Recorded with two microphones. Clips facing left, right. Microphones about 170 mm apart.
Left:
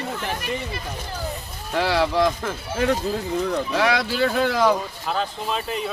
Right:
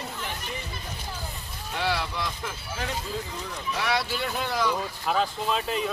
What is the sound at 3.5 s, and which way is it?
Speech, 90° left.